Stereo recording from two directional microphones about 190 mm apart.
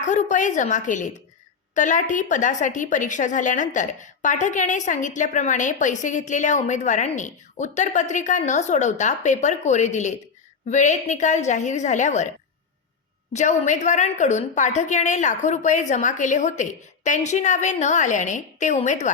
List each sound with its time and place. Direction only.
0.0 s a woman's voice: 40° left (ahead or behind)
13.3 s a woman's voice: 40° left (ahead or behind)